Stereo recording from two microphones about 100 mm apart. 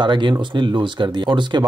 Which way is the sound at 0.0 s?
50° right (ahead or behind).